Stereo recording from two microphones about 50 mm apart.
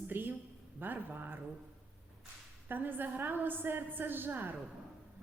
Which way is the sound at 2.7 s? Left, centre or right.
Right.